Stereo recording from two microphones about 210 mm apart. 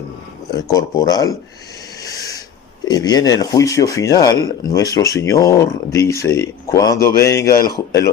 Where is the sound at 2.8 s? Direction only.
20° left (ahead or behind).